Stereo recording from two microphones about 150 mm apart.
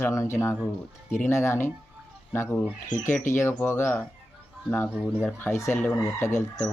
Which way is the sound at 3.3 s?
55° left (ahead or behind).